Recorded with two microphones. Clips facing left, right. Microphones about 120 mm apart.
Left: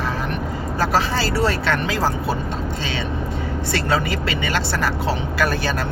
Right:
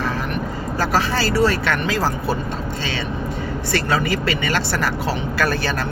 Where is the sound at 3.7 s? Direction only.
25° left (ahead or behind).